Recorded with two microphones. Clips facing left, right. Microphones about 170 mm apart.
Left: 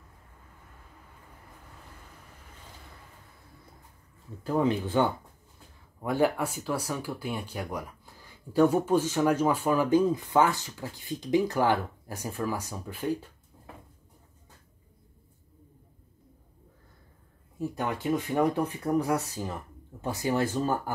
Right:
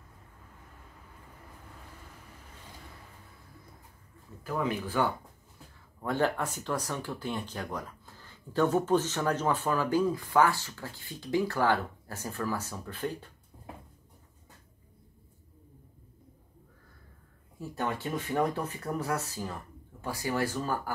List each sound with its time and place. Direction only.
4.4 s speech: 30° left (ahead or behind)
6.0 s speech: 10° left (ahead or behind)
18.3 s speech: 15° left (ahead or behind)